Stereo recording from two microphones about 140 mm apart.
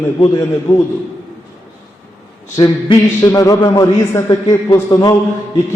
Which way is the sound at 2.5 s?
30° left (ahead or behind).